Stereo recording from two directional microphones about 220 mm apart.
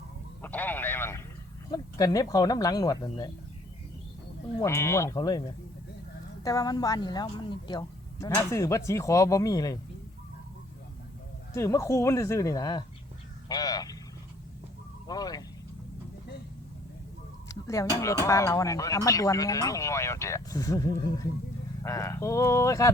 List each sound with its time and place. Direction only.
0.4 s vehicle: 10° left (ahead or behind)
1.7 s speech: 15° left (ahead or behind)
4.6 s speech: 10° left (ahead or behind)
6.4 s speech: 15° left (ahead or behind)
11.5 s speech: 10° left (ahead or behind)
15.0 s speech: 15° left (ahead or behind)
17.5 s a sound: 15° left (ahead or behind)
18.0 s speech: 15° left (ahead or behind)